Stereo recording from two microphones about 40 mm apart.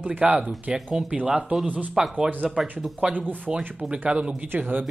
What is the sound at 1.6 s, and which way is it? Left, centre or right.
Speech, right.